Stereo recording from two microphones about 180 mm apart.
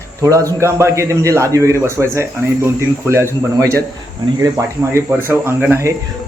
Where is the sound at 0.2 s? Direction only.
20° right (ahead or behind).